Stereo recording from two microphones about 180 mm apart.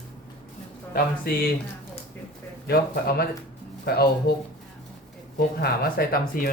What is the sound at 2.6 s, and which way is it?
Speech, 60° left (ahead or behind).